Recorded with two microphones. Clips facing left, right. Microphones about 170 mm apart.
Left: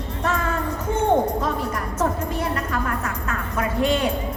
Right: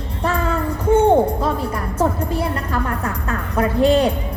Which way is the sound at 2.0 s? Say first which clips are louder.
Right 4 dB; 30° right (ahead or behind).